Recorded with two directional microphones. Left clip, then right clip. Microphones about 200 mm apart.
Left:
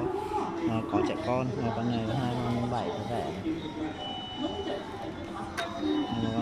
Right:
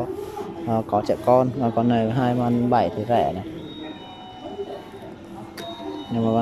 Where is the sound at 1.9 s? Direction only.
45° right (ahead or behind).